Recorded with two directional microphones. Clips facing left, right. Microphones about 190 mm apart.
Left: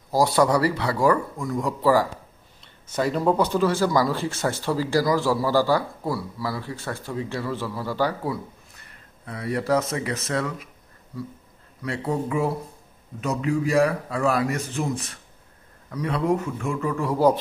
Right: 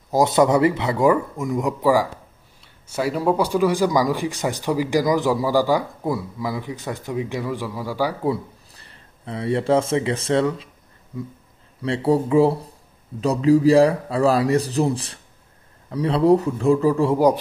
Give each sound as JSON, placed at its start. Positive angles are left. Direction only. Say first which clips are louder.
{"t": 0.1, "sound": "speech", "louder": "right 3 dB", "side_deg": -20}
{"t": 8.3, "sound": "speech", "louder": "right 6 dB", "side_deg": -30}
{"t": 11.8, "sound": "a man's voice", "louder": "right 7 dB", "side_deg": -30}